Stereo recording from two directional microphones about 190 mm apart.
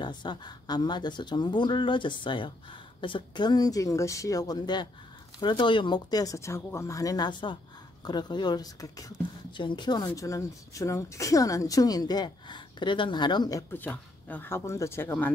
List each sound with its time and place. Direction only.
0.0 s speech: 25° left (ahead or behind)